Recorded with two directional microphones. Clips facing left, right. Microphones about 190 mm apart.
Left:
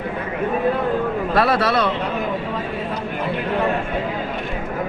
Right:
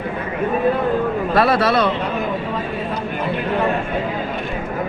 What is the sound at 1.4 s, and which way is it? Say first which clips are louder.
Speech: right 2 dB; 20° right (ahead or behind).